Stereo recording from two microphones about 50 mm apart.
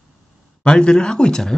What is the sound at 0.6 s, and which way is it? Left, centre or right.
Speech, centre.